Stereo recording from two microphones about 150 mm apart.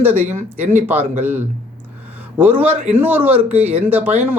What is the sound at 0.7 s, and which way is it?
Speech, 15° right (ahead or behind).